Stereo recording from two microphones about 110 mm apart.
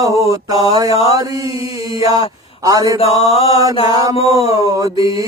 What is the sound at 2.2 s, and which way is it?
Speech, 30° right (ahead or behind).